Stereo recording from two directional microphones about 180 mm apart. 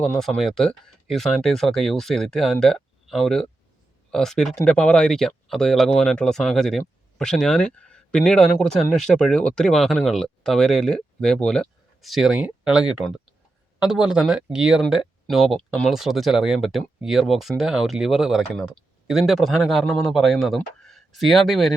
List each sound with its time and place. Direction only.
0.0 s speech: centre (ahead or behind)